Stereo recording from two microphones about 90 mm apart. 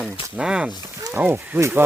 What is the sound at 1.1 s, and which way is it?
Speech, 25° right (ahead or behind).